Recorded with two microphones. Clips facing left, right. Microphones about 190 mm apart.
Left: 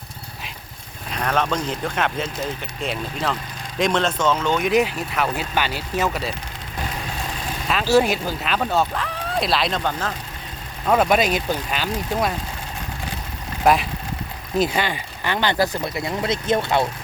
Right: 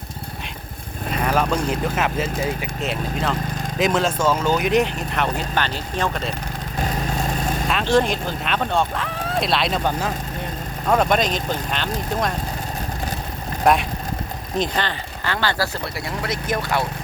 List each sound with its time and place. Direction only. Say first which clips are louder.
1.1 s speech: right 2 dB; 5° right (ahead or behind)
7.7 s speech: left 2 dB; 5° left (ahead or behind)
10.8 s speech: left 1 dB; 5° left (ahead or behind)
13.7 s speech: even; centre (ahead or behind); by 16.8 s 25° left (ahead or behind)